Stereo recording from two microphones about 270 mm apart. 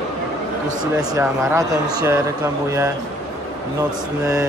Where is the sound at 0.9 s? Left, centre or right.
Centre.